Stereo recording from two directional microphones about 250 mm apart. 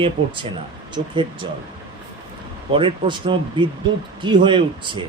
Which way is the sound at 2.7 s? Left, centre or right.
Centre.